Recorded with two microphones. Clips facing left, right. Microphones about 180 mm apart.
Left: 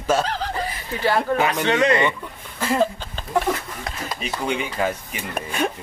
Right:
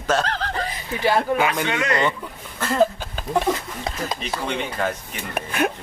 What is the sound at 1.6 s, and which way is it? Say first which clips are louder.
Speech: left 5 dB; 30° left (ahead or behind).